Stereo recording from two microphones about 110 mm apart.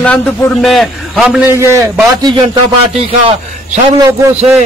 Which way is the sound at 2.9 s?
70° right (ahead or behind).